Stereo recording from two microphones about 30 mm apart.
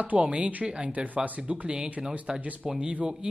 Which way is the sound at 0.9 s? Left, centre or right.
Right.